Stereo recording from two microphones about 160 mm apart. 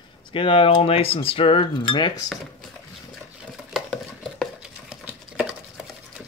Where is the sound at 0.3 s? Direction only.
35° left (ahead or behind).